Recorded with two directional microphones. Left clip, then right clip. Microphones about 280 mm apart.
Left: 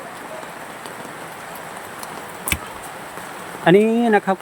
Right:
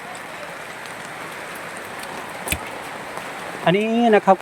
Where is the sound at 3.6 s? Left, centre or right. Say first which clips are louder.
Left 4 dB; centre.